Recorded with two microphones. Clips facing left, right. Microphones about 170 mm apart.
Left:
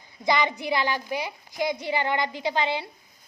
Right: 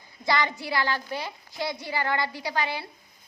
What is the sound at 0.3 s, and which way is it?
A woman's voice, 20° left (ahead or behind).